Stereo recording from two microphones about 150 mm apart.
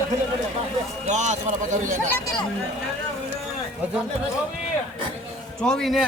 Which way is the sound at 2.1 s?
25° left (ahead or behind).